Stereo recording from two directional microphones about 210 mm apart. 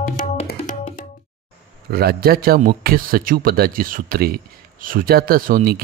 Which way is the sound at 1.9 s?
45° right (ahead or behind).